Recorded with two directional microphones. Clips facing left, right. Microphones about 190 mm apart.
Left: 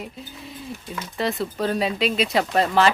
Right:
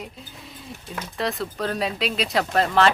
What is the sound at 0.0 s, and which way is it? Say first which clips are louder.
Speech: left 3 dB; centre (ahead or behind).